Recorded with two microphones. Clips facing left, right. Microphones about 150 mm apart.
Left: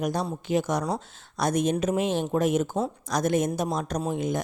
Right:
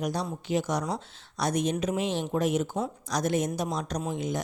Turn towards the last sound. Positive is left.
turn(degrees=50)  # may be behind; listen again after turning